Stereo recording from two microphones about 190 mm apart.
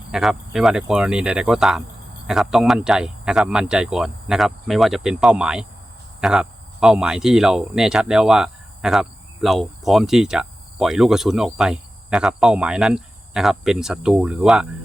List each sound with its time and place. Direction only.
0.1 s speech: centre (ahead or behind)